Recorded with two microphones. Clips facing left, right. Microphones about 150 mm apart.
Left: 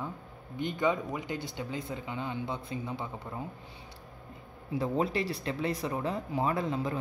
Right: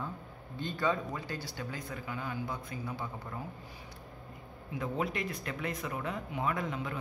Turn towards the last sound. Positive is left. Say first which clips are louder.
# left 4 dB
turn(degrees=35)  # may be behind; listen again after turning